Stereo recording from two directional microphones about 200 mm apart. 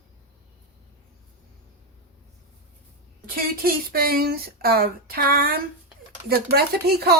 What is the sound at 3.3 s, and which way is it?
A child's voice, 45° right (ahead or behind).